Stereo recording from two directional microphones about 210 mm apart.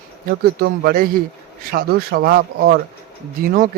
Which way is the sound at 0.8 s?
45° right (ahead or behind).